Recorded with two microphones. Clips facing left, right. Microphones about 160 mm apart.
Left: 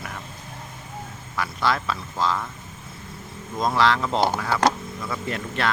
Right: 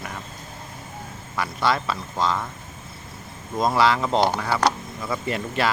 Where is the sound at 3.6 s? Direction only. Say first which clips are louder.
Right 1 dB; centre (ahead or behind).